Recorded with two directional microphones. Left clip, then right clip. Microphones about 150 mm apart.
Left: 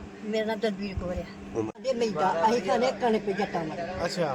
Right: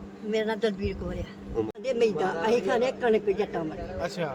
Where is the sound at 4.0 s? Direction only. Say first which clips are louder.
Left 2 dB; 45° right (ahead or behind).